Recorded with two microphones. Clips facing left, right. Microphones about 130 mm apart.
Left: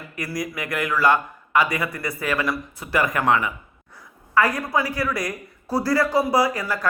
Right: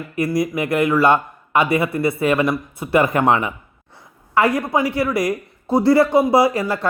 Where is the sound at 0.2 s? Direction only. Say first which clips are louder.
Right 9 dB; 25° right (ahead or behind).